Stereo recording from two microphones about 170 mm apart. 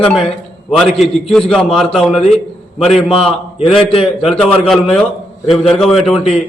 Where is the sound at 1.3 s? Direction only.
5° left (ahead or behind).